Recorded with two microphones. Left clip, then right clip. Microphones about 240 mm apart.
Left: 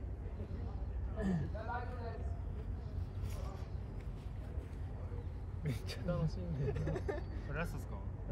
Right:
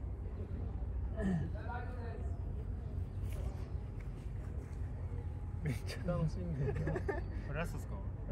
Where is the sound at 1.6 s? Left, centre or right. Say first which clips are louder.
Left 3 dB; left.